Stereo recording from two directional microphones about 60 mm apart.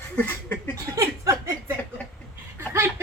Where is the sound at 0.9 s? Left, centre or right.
Right.